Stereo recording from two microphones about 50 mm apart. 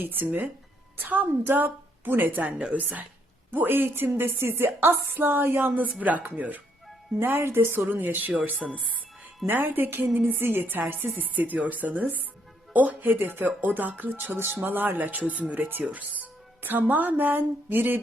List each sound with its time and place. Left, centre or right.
0.0 s speech: right
3.5 s a woman's voice: right
7.3 s a woman's voice: right
7.9 s speech: right
8.6 s speech: centre
9.5 s a woman's voice: right